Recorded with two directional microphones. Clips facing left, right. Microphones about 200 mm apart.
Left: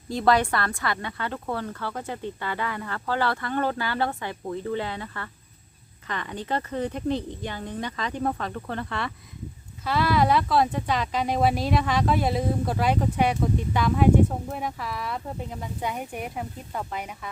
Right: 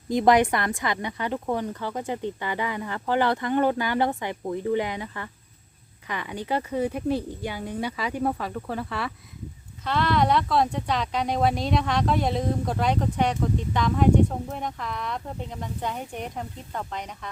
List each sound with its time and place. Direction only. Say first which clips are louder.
0.1 s speech: right 3 dB; 15° right (ahead or behind); by 17.2 s 5° left (ahead or behind)